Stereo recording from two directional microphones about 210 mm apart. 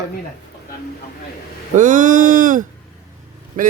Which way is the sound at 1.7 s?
40° right (ahead or behind).